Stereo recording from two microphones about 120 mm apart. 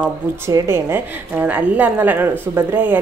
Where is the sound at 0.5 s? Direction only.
20° right (ahead or behind).